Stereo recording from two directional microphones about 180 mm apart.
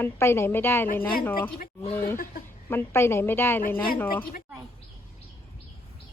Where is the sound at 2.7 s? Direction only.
15° left (ahead or behind).